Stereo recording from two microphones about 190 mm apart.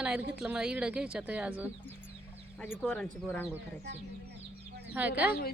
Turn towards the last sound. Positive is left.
turn(degrees=-10)  # may be behind; listen again after turning